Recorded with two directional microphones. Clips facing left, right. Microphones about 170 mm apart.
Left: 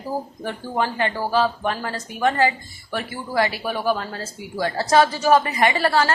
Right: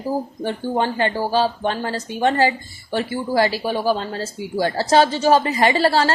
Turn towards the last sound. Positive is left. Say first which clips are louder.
# right 2 dB
turn(degrees=-30)  # may be behind; listen again after turning